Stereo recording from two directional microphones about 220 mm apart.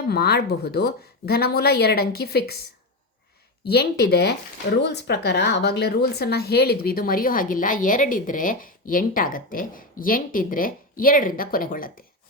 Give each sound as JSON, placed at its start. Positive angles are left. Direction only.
{"t": 0.1, "sound": "a woman's voice", "side_deg": 45}
{"t": 3.7, "sound": "a woman's voice", "side_deg": 45}